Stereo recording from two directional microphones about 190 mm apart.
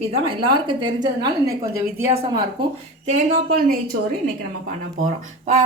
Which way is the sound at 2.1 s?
25° right (ahead or behind).